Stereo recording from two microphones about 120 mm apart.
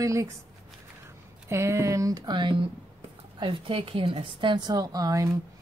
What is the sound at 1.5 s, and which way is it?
A woman's voice, 25° right (ahead or behind).